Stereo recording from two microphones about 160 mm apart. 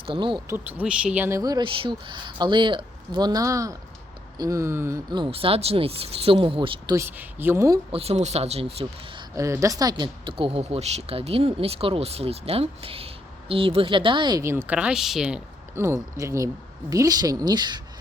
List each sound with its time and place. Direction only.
0.0 s speech: 30° right (ahead or behind)
0.5 s speech: 10° right (ahead or behind)
1.4 s speech: 25° right (ahead or behind)
5.1 s speech: 30° right (ahead or behind)
6.9 s speech: 15° right (ahead or behind)
7.9 s speech: 40° right (ahead or behind)
9.3 s speech: 20° right (ahead or behind); by 15.4 s 5° right (ahead or behind)
15.7 s speech: 20° right (ahead or behind)